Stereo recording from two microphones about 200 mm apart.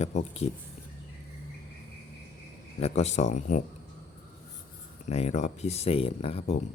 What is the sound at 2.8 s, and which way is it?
Speech, 35° left (ahead or behind).